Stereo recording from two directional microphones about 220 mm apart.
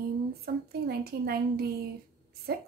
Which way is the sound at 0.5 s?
45° right (ahead or behind).